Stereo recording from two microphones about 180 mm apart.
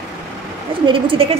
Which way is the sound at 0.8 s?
30° right (ahead or behind).